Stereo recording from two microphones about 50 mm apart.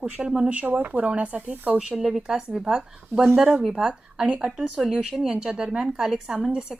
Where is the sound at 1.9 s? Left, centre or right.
Centre.